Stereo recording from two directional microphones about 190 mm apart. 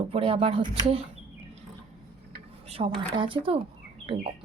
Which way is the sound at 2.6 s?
30° right (ahead or behind).